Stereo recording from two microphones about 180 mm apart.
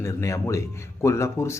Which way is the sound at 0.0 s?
15° left (ahead or behind).